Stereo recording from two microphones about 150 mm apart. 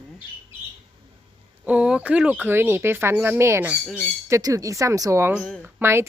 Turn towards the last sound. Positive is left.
turn(degrees=-15)  # may be behind; listen again after turning